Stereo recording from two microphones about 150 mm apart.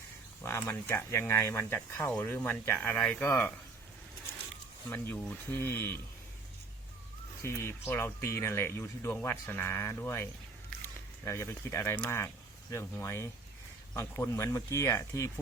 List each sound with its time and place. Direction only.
0.4 s speech: 20° left (ahead or behind)
4.9 s speech: 10° left (ahead or behind)
7.4 s speech: 15° left (ahead or behind)
11.3 s speech: 20° left (ahead or behind)
12.7 s speech: 20° left (ahead or behind)